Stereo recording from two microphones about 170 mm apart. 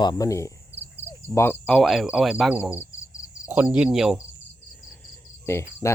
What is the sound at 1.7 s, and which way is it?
Speech, centre (ahead or behind).